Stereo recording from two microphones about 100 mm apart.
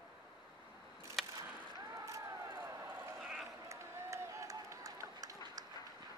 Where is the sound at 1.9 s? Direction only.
30° right (ahead or behind).